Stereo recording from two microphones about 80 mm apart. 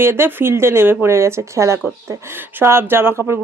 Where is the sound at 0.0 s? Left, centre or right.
Right.